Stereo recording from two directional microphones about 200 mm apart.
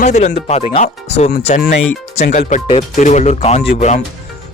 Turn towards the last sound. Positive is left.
turn(degrees=35)  # may be behind; listen again after turning